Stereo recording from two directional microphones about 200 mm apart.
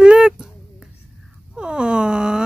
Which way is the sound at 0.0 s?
5° right (ahead or behind).